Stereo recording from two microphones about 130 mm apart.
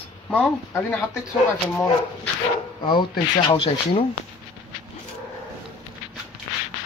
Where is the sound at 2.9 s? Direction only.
35° left (ahead or behind).